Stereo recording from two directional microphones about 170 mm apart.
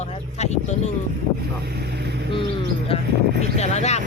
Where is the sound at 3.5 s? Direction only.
40° left (ahead or behind).